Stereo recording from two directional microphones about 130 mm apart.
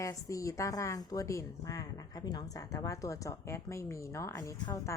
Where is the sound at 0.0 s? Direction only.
25° left (ahead or behind).